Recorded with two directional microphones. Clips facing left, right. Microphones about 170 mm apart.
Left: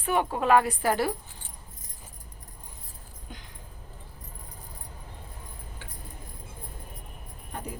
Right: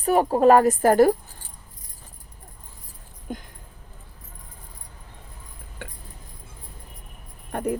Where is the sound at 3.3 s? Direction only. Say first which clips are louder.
Right 13 dB; 50° right (ahead or behind).